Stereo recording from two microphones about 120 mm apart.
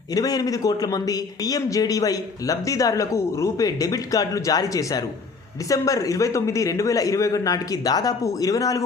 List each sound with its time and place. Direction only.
0.1 s a man's voice: 30° left (ahead or behind)